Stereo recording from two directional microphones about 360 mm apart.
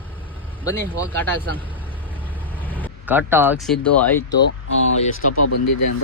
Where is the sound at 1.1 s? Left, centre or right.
Centre.